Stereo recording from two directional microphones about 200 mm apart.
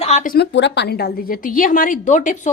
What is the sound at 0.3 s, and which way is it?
A woman's voice, 60° left (ahead or behind).